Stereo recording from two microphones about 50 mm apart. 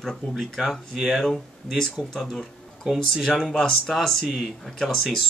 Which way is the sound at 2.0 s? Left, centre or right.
Centre.